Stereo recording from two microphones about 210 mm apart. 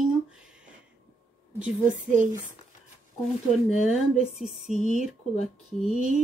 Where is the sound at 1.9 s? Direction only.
35° right (ahead or behind).